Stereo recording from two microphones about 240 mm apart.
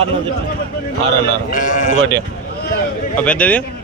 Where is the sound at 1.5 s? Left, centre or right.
Left.